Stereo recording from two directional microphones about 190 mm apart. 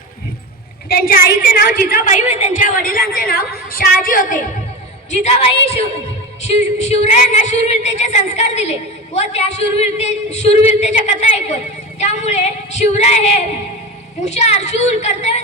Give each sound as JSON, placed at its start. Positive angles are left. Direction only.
{"t": 0.9, "sound": "a sound", "side_deg": 50}
{"t": 2.6, "sound": "a woman's voice", "side_deg": 45}
{"t": 5.2, "sound": "female singing", "side_deg": 30}